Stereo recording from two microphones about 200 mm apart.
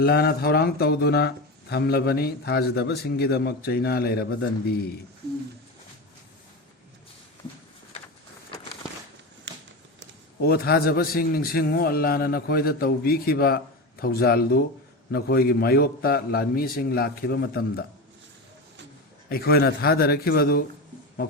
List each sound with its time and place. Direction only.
0.0 s a man's voice: 50° left (ahead or behind)
9.5 s a sound: 60° right (ahead or behind)
10.4 s a man's voice: 50° left (ahead or behind)
19.3 s a man's voice: 50° left (ahead or behind)